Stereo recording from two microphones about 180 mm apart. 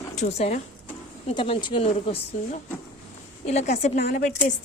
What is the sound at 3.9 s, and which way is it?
Speech, 50° left (ahead or behind).